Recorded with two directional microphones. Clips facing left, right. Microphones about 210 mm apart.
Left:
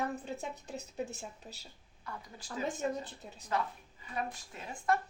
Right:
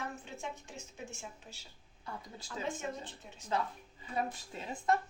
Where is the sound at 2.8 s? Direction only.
40° left (ahead or behind).